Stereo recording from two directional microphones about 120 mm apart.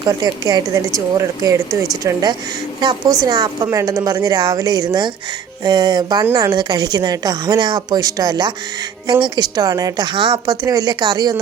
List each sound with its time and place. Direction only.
0.0 s a woman's voice: 35° right (ahead or behind)